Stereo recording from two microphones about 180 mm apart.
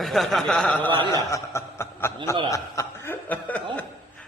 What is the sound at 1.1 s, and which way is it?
Chuckle, 15° left (ahead or behind).